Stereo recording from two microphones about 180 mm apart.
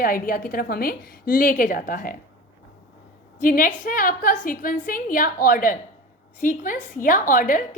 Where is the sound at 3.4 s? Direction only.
50° left (ahead or behind).